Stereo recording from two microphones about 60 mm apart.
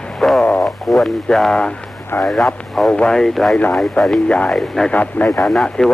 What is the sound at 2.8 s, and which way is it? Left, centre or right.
Speech, centre.